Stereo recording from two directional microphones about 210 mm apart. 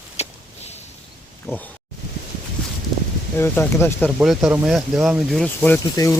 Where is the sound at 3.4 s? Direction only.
10° left (ahead or behind).